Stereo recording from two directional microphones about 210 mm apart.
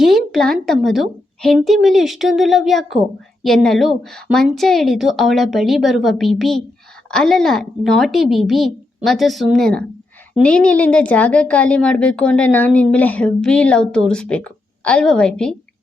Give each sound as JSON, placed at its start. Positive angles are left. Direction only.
{"t": 0.0, "sound": "a woman's voice", "side_deg": 0}